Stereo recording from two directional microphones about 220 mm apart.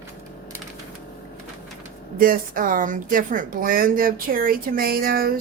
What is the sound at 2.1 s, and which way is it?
Speech, 40° right (ahead or behind).